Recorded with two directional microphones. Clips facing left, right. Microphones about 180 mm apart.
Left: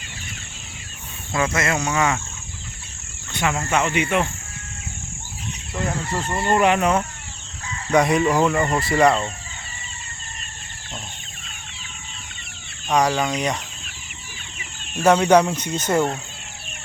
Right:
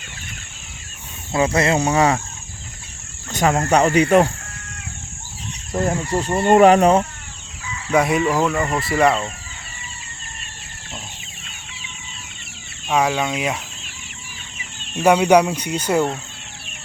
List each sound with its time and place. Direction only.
1.3 s speech: 30° right (ahead or behind)
3.3 s speech: 40° right (ahead or behind)
5.7 s speech: 40° right (ahead or behind)
7.9 s speech: 5° right (ahead or behind)
12.9 s chicken: 5° right (ahead or behind)
15.0 s speech: 10° right (ahead or behind)